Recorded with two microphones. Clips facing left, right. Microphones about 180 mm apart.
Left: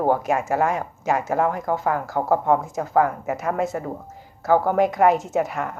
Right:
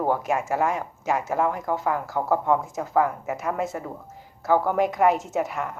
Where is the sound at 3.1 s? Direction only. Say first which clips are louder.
Left 3 dB; 55° left (ahead or behind).